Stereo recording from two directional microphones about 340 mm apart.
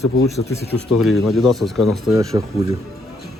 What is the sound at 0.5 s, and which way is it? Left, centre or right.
Speech, centre.